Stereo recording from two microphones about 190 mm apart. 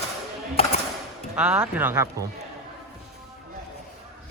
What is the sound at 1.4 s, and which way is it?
Speech, 5° right (ahead or behind).